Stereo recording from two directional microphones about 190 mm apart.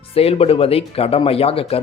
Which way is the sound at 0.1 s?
30° left (ahead or behind).